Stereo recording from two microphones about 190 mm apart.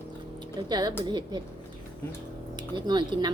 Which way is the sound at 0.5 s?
20° right (ahead or behind).